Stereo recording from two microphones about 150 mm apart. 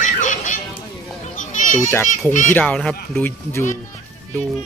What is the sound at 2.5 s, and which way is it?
Speech, 10° left (ahead or behind).